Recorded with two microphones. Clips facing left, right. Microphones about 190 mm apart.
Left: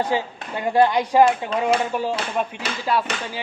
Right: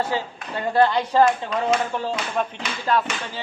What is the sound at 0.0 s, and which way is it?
Speech, 15° left (ahead or behind).